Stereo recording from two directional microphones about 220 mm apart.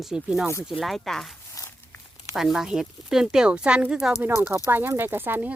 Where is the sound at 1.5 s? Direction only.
15° left (ahead or behind).